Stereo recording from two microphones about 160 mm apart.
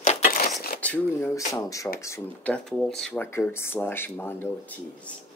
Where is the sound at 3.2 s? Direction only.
15° left (ahead or behind).